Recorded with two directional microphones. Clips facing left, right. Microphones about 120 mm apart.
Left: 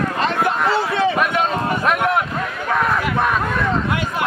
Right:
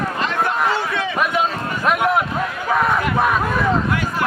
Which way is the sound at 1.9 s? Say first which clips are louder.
Right 3 dB; centre (ahead or behind).